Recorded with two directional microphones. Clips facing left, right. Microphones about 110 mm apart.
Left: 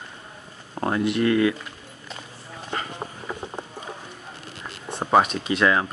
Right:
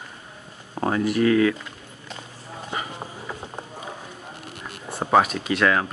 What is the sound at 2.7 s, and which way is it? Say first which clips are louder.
Insect: even; 10° right (ahead or behind).